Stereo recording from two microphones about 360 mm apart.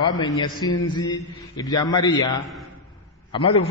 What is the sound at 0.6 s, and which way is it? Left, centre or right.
A man's voice, centre.